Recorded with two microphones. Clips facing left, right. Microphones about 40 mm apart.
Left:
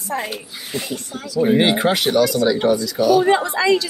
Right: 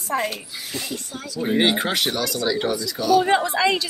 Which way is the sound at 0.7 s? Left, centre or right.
Left.